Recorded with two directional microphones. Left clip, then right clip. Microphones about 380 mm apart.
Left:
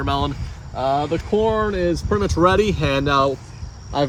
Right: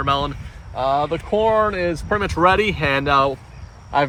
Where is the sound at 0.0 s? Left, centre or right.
Centre.